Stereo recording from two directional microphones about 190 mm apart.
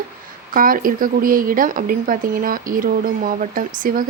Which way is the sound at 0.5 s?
50° right (ahead or behind).